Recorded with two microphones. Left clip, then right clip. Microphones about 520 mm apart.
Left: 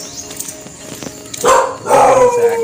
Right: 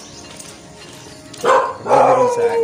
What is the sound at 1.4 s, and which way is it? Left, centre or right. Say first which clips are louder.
Dog: left 3 dB; centre.